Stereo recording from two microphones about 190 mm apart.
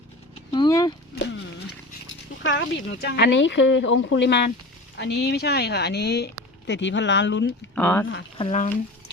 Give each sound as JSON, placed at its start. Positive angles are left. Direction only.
{"t": 0.5, "sound": "a sound", "side_deg": 20}
{"t": 2.0, "sound": "speech", "side_deg": 85}
{"t": 7.8, "sound": "speech", "side_deg": 10}
{"t": 8.4, "sound": "speech", "side_deg": 35}